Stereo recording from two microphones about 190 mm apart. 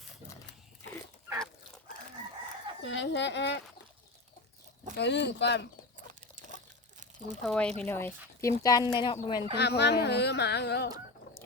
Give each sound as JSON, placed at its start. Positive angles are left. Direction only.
{"t": 2.8, "sound": "speech", "side_deg": 75}
{"t": 4.9, "sound": "speech", "side_deg": 65}
{"t": 7.4, "sound": "speech", "side_deg": 5}
{"t": 9.6, "sound": "speech", "side_deg": 60}